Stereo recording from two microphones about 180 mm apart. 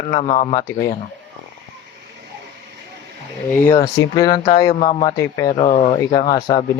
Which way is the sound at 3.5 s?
15° left (ahead or behind).